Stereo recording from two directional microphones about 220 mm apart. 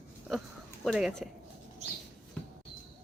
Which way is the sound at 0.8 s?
5° right (ahead or behind).